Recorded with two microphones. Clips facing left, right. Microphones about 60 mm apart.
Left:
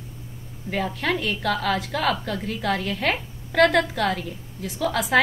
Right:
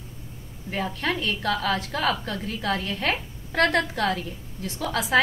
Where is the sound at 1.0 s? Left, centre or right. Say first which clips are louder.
Left 1 dB; left.